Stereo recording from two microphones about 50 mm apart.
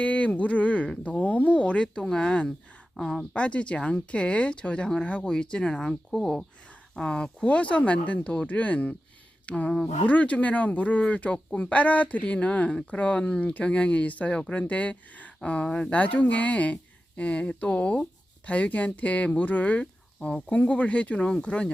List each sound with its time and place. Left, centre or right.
0.0 s a sound: left
0.3 s speech: left; by 6.4 s centre
6.9 s speech: centre
9.6 s speech: centre
10.1 s speech: left
16.0 s speech: left
20.1 s speech: centre
20.5 s speech: left